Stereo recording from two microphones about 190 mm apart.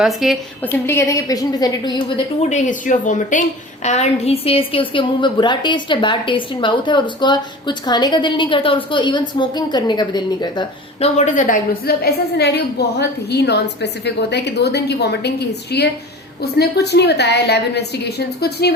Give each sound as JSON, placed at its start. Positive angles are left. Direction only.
{"t": 0.0, "sound": "a woman's voice", "side_deg": 0}
{"t": 0.6, "sound": "a woman's voice", "side_deg": 10}
{"t": 2.5, "sound": "a woman's voice", "side_deg": 40}
{"t": 11.3, "sound": "a woman's voice", "side_deg": 45}